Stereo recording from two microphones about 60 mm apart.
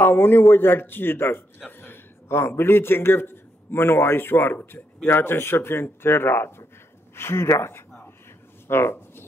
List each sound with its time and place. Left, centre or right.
0.0 s a man's voice: left